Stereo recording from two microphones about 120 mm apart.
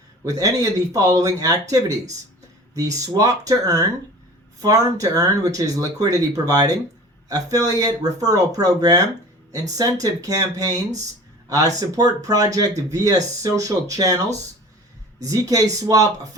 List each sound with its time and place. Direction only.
0.3 s speech: 30° right (ahead or behind)
2.7 s speech: 30° right (ahead or behind)
15.2 s speech: 30° right (ahead or behind)